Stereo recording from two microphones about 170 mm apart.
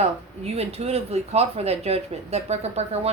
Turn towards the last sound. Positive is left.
turn(degrees=-40)  # may be behind; listen again after turning